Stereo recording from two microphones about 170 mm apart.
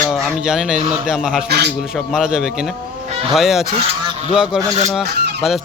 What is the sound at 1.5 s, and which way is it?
Speech, 75° right (ahead or behind).